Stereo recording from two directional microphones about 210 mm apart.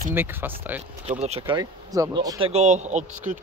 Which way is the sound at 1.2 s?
30° right (ahead or behind).